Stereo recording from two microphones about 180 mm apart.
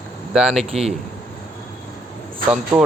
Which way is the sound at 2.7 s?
15° right (ahead or behind).